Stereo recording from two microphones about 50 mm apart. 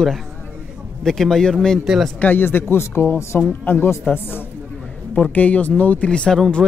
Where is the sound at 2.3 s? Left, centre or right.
Left.